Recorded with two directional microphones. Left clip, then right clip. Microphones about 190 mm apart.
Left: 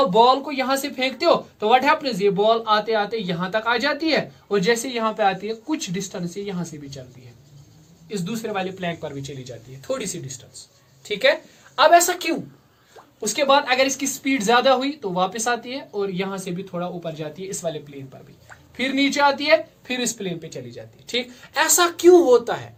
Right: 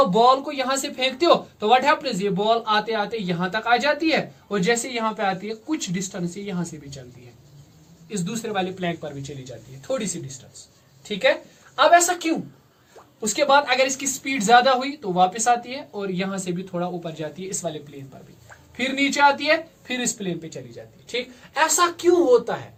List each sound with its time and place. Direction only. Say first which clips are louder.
0.1 s speech: left 1 dB; 25° left (ahead or behind)
8.1 s speech: even; 15° left (ahead or behind); by 10.3 s 35° left (ahead or behind)
11.8 s a woman's voice: left 1 dB; 35° left (ahead or behind)
18.8 s speech: even; 20° left (ahead or behind); by 22.7 s 50° left (ahead or behind)